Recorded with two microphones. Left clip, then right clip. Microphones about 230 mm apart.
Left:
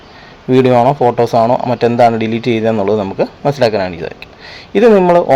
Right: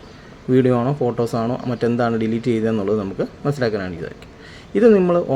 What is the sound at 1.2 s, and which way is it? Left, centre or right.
A man's voice, centre.